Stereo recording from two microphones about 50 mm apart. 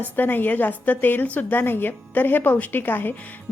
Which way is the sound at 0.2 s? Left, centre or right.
Left.